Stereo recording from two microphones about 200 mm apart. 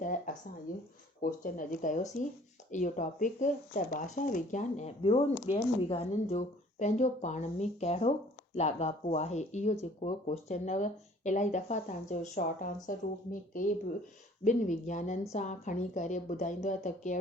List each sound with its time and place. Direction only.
0.0 s a sound: 40° left (ahead or behind)
1.2 s speech: 45° left (ahead or behind)
5.0 s speech: 30° left (ahead or behind)